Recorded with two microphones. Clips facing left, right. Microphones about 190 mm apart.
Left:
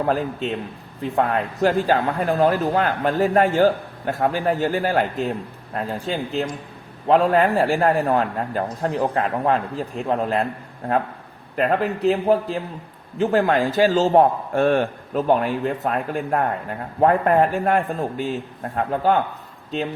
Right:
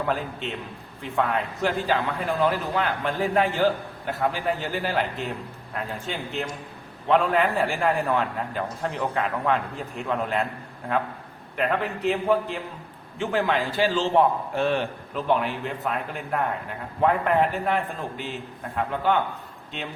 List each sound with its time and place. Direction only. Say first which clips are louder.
0.0 s a man's voice: left 6 dB; 40° left (ahead or behind)
11.5 s a man's voice: left 5 dB; 35° left (ahead or behind)